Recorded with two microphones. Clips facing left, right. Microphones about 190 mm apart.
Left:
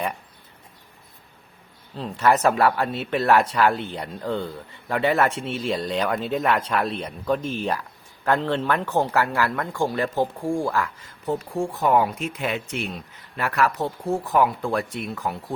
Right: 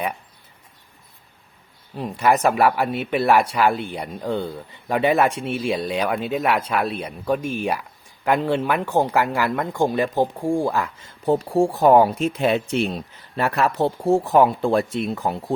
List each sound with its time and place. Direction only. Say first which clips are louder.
2.0 s speech: right 1 dB; 15° right (ahead or behind)
11.3 s speech: right 7 dB; 30° right (ahead or behind)